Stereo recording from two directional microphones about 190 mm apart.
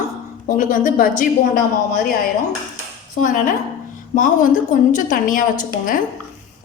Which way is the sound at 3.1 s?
45° left (ahead or behind).